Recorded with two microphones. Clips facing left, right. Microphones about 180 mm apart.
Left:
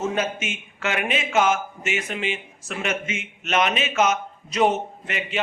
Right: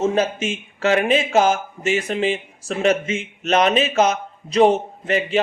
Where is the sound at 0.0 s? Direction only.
30° right (ahead or behind).